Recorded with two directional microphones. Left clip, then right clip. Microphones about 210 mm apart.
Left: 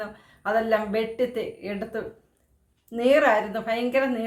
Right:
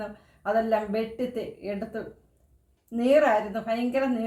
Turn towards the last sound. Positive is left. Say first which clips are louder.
# left 3 dB
turn(degrees=5)  # may be behind; listen again after turning